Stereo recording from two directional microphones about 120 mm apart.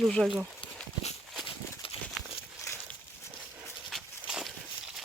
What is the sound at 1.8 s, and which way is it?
Horse, 50° left (ahead or behind).